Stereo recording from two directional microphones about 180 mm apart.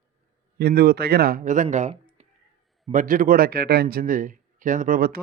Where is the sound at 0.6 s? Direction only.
60° right (ahead or behind).